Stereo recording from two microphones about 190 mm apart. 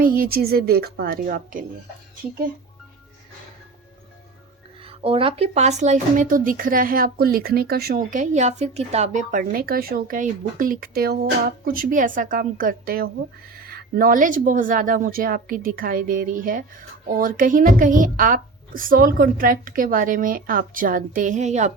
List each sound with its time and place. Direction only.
0.0 s speech: 50° right (ahead or behind)
4.9 s speech: 30° right (ahead or behind)